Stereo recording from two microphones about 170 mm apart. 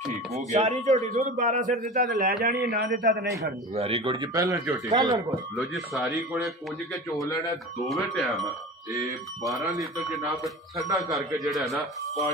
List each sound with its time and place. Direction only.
0.5 s speech: 40° right (ahead or behind)
1.1 s a man's voice: 55° right (ahead or behind)
2.4 s a man's voice: 70° right (ahead or behind)
3.7 s a man's voice: 35° right (ahead or behind)
7.2 s speech: 20° left (ahead or behind)
7.9 s a man's voice: centre (ahead or behind)
10.3 s a man's voice: centre (ahead or behind)